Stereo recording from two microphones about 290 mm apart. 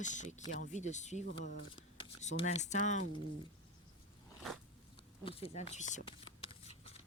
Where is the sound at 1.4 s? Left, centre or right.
Right.